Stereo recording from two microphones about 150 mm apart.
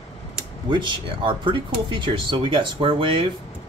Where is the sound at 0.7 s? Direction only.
35° right (ahead or behind).